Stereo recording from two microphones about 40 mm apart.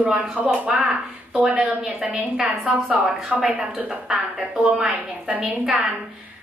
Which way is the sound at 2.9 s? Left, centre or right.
Right.